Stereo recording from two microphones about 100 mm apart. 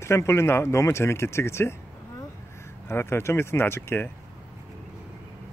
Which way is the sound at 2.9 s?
25° left (ahead or behind).